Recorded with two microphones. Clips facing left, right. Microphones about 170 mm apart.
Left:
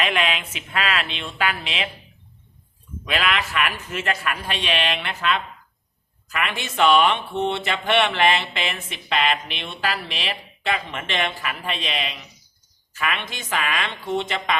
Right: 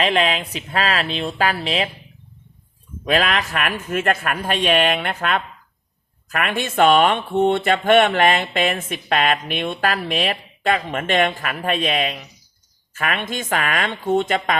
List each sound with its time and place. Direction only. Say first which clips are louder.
0.0 s speech: right 5 dB; 35° right (ahead or behind)
3.0 s speech: right 5 dB; 40° right (ahead or behind)